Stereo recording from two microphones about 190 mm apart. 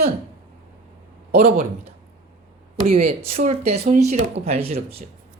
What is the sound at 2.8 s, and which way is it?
Speech, 30° right (ahead or behind).